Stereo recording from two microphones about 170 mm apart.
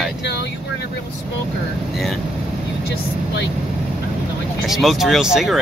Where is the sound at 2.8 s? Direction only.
75° left (ahead or behind).